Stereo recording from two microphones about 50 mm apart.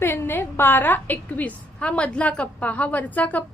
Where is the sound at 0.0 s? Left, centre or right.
Left.